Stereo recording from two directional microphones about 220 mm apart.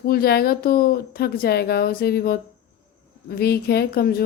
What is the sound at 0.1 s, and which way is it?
Speech, 45° left (ahead or behind).